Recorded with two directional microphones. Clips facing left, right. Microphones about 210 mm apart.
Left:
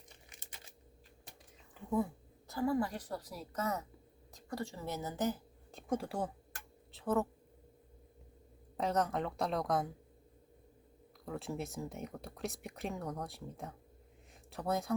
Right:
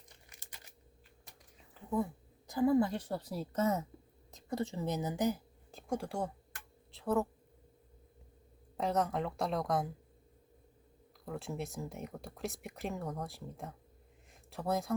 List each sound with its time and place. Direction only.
0.3 s a sound: 25° left (ahead or behind)
2.5 s a woman's voice: 20° right (ahead or behind)
5.7 s a woman's voice: centre (ahead or behind)
8.8 s speech: centre (ahead or behind)
11.3 s speech: centre (ahead or behind)